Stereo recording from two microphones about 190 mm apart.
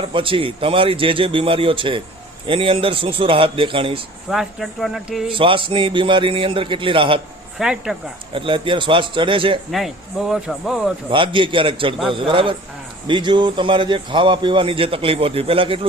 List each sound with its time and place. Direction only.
0.0 s a man's voice: 25° right (ahead or behind)
4.3 s speech: centre (ahead or behind)
5.3 s a man's voice: 25° right (ahead or behind)
7.6 s speech: 5° right (ahead or behind)
8.3 s a man's voice: 25° right (ahead or behind)
9.7 s speech: centre (ahead or behind)
11.1 s a man's voice: 25° right (ahead or behind)